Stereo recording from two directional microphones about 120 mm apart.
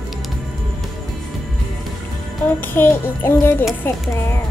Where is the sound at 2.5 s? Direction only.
15° left (ahead or behind).